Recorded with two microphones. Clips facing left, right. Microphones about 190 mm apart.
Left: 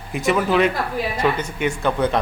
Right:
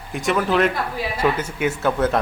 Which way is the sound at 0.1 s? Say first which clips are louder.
Left 1 dB; centre (ahead or behind).